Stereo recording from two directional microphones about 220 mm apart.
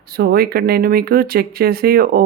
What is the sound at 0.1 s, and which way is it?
A woman's voice, 45° right (ahead or behind).